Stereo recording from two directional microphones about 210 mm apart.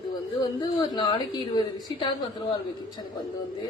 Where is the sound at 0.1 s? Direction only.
20° left (ahead or behind).